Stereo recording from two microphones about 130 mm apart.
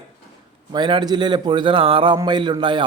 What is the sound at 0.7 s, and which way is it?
A man's voice, 35° right (ahead or behind).